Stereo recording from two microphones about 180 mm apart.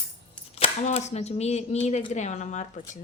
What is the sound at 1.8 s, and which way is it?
Speech, 40° left (ahead or behind).